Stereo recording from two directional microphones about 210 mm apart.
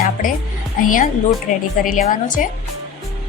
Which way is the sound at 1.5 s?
40° left (ahead or behind).